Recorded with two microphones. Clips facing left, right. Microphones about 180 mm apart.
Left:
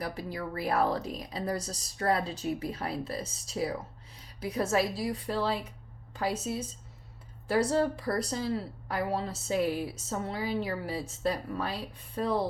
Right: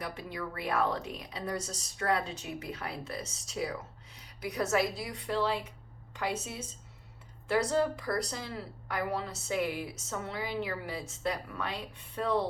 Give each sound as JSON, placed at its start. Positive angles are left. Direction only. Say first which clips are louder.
{"t": 0.0, "sound": "a woman's voice", "louder": "left 3 dB", "side_deg": 35}